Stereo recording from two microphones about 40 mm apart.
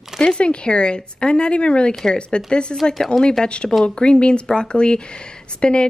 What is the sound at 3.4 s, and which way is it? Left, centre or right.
Speech, left.